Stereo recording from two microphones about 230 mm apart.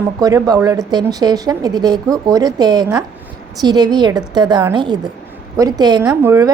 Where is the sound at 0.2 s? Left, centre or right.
Centre.